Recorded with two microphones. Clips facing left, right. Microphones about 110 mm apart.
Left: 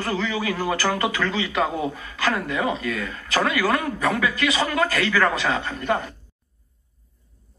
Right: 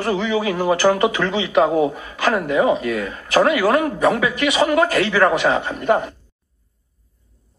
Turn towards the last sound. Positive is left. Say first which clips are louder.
# right 6 dB
turn(degrees=-15)  # may be behind; listen again after turning